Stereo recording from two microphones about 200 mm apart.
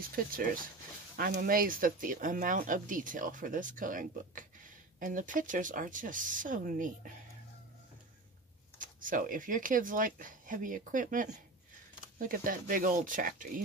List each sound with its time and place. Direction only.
0.0 s speech: 45° right (ahead or behind)
8.7 s speech: 40° right (ahead or behind)